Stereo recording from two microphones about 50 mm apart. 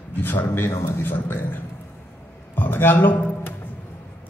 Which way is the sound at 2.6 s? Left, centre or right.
Left.